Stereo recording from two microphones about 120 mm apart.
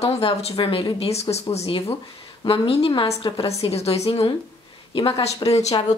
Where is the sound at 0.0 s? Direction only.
60° left (ahead or behind).